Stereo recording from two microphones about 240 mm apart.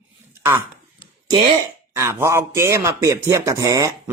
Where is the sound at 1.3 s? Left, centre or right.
Centre.